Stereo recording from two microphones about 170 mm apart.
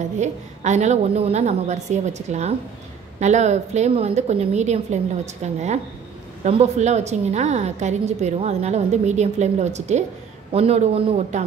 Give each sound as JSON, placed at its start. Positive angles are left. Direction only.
{"t": 0.2, "sound": "a woman's voice", "side_deg": -45}